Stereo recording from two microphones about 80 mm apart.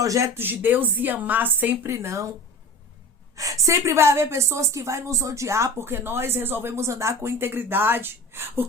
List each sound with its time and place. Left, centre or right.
0.0 s speech: right
0.3 s a woman's voice: right
1.9 s a woman's voice: right
3.3 s a woman's voice: right